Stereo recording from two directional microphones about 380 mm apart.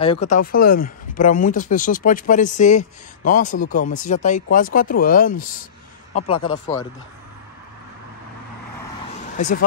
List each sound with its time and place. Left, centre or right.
0.0 s speech: centre
9.4 s speech: centre